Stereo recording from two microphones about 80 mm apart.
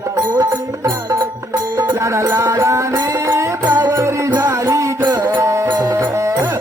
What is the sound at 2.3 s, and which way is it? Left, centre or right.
Music, right.